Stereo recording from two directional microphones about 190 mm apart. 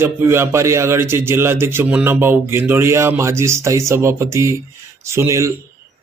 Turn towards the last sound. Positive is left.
turn(degrees=-15)  # may be behind; listen again after turning